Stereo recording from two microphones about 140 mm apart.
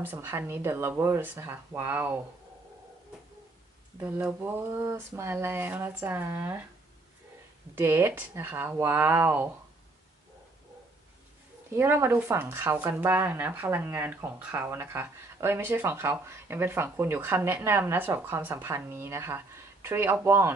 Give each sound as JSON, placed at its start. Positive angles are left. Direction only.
{"t": 0.0, "sound": "speech", "side_deg": -15}
{"t": 4.0, "sound": "speech", "side_deg": -10}
{"t": 7.7, "sound": "speech", "side_deg": -15}
{"t": 11.7, "sound": "speech", "side_deg": -15}